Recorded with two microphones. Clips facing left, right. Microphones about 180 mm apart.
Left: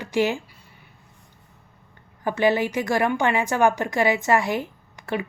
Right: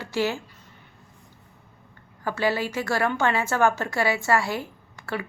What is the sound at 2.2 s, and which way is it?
A woman's voice, 20° left (ahead or behind).